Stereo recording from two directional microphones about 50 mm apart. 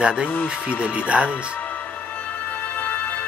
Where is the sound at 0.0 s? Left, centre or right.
Right.